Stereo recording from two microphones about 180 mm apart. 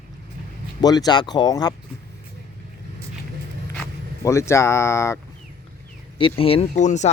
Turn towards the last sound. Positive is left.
turn(degrees=40)  # may be behind; listen again after turning